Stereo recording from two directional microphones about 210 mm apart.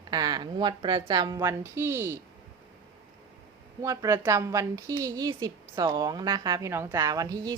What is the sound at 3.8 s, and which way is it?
A woman's voice, 15° right (ahead or behind).